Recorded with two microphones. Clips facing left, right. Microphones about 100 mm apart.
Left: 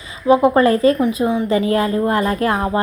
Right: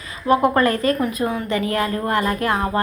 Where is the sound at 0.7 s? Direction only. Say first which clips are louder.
Left 5 dB; 25° left (ahead or behind).